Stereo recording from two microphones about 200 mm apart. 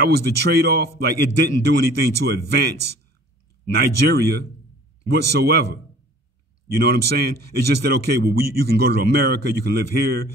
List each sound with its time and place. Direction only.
0.0 s a man's voice: 55° right (ahead or behind)